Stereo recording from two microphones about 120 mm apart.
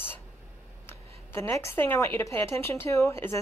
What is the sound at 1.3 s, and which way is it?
A woman's voice, 20° left (ahead or behind).